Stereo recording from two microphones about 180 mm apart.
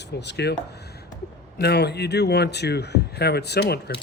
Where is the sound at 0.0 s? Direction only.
70° left (ahead or behind).